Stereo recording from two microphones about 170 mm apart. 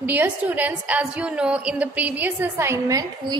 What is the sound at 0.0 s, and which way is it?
A woman's voice, 10° right (ahead or behind).